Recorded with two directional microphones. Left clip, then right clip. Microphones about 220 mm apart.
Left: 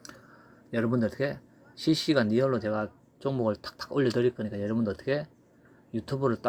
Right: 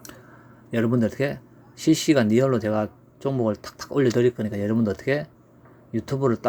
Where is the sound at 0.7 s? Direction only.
5° right (ahead or behind).